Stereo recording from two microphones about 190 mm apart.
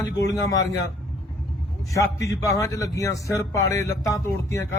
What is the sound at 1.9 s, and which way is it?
A man's voice, 15° left (ahead or behind).